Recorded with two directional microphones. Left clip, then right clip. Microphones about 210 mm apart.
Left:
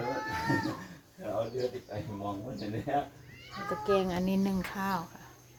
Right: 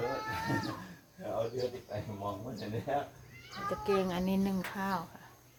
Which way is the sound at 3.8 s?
Centre (ahead or behind).